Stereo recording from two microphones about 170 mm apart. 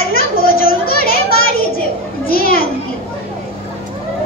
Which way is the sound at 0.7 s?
60° left (ahead or behind).